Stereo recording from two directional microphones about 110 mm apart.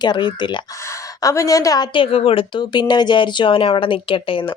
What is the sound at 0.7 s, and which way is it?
A woman's voice, 25° left (ahead or behind).